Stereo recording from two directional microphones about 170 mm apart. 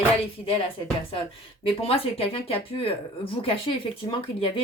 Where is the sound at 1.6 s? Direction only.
35° left (ahead or behind).